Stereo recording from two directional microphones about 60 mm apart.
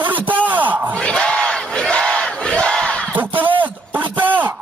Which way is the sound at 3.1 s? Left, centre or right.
Right.